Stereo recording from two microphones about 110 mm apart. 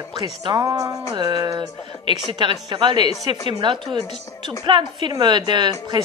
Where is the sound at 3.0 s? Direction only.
70° left (ahead or behind).